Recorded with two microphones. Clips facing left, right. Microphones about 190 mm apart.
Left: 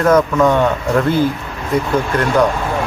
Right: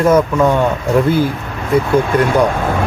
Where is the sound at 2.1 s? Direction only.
55° right (ahead or behind).